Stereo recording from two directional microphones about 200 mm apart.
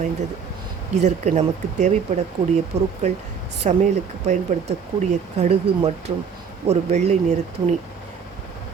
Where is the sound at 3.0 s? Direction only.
35° right (ahead or behind).